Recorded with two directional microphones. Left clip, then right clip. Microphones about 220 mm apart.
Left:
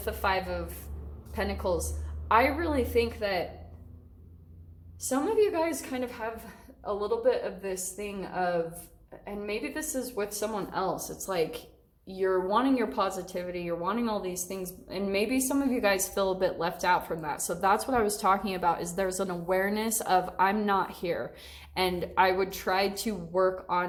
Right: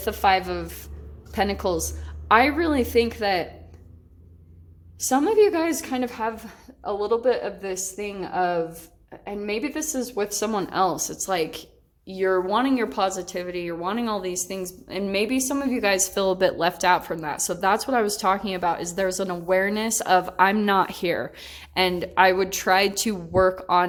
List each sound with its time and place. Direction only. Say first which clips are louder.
0.0 s a woman's voice: right 8 dB; 50° right (ahead or behind)
4.9 s a woman's voice: right 8 dB; 45° right (ahead or behind)